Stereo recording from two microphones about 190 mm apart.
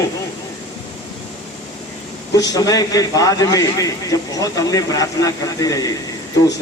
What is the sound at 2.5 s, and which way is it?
A man's voice, 20° left (ahead or behind).